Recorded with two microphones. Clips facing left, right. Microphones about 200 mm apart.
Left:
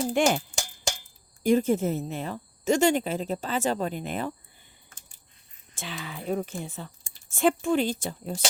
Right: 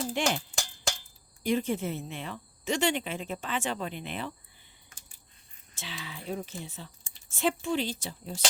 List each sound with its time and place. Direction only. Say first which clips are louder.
0.1 s cowbell: left 8 dB; 50° left (ahead or behind)
1.5 s speech: left 6 dB; 45° left (ahead or behind)
5.7 s speech: left 5 dB; 50° left (ahead or behind)